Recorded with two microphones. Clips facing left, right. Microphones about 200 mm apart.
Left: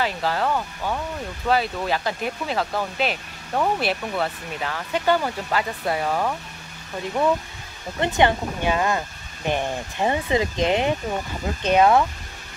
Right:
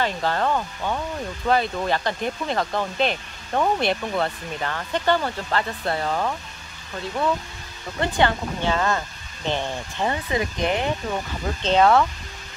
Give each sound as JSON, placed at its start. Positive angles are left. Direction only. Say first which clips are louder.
{"t": 0.0, "sound": "speech", "louder": "even", "side_deg": 5}
{"t": 8.0, "sound": "speech", "louder": "left 2 dB", "side_deg": 20}